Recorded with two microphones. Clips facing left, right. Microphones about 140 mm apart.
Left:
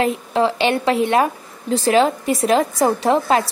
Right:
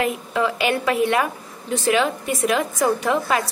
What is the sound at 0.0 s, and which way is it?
A woman's voice, 30° left (ahead or behind).